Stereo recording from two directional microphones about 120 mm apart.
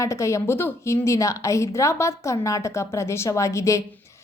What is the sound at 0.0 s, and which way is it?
A woman's voice, 25° left (ahead or behind).